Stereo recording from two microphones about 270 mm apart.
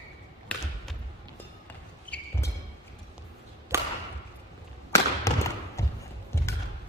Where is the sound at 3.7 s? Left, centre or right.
Centre.